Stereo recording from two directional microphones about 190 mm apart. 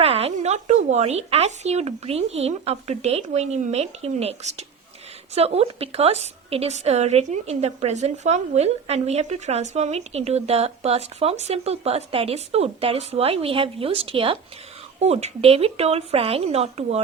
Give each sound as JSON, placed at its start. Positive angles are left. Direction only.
{"t": 0.0, "sound": "a woman's voice", "side_deg": -30}